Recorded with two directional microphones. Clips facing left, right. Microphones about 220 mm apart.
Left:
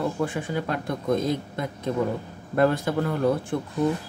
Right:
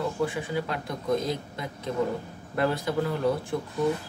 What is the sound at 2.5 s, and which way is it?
Speech, 50° left (ahead or behind).